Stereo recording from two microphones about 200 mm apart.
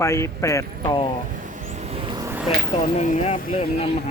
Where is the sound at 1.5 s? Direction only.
35° right (ahead or behind).